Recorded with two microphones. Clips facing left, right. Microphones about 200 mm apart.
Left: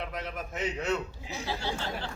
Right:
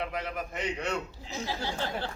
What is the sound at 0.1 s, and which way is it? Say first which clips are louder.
Speech: right 2 dB; centre (ahead or behind).